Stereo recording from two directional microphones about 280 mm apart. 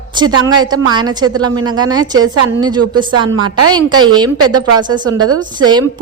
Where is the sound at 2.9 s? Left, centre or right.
Right.